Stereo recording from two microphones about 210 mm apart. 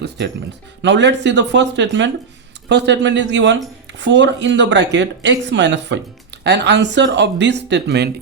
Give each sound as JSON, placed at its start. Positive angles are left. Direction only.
{"t": 0.8, "sound": "speech", "side_deg": -55}